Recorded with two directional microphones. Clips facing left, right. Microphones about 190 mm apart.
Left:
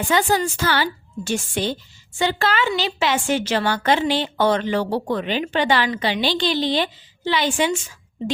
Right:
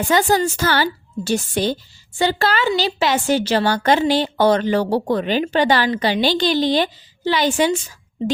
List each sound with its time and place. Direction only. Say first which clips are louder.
0.1 s a woman's voice: right 3 dB; 40° right (ahead or behind)